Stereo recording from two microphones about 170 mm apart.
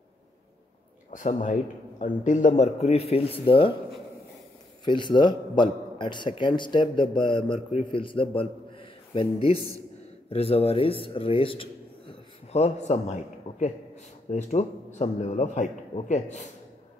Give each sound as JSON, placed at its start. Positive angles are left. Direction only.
{"t": 1.1, "sound": "a man's voice", "side_deg": 50}
{"t": 4.8, "sound": "a man's voice", "side_deg": 25}